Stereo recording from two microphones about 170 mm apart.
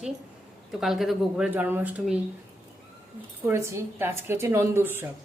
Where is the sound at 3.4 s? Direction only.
15° right (ahead or behind).